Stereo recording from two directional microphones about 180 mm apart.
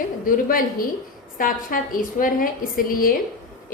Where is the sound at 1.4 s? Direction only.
50° left (ahead or behind).